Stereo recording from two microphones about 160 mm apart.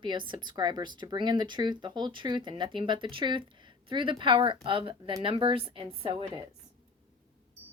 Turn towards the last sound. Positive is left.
turn(degrees=-30)  # may be behind; listen again after turning